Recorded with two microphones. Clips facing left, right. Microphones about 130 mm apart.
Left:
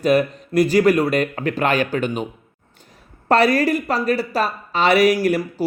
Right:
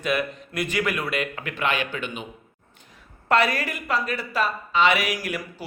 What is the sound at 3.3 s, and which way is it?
A man's voice, 35° left (ahead or behind).